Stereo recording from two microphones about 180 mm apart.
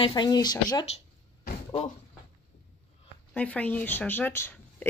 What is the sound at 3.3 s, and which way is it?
Speech, 10° left (ahead or behind).